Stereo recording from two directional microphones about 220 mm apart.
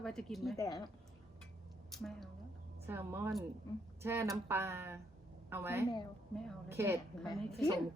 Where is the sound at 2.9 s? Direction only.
10° right (ahead or behind).